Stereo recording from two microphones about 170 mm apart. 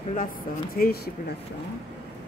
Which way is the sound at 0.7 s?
60° left (ahead or behind).